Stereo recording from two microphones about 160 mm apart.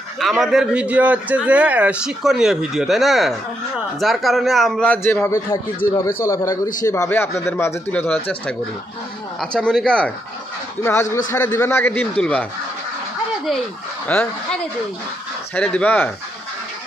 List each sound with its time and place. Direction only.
0.2 s a man's voice: centre (ahead or behind)
10.8 s a man's voice: 15° left (ahead or behind)
14.0 s a man's voice: 10° left (ahead or behind)